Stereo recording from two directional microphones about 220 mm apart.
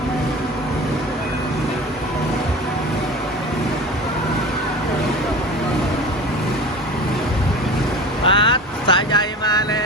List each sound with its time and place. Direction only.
8.2 s vehicle: 25° left (ahead or behind)